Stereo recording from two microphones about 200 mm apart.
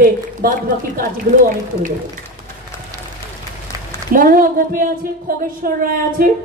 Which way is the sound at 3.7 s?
15° right (ahead or behind).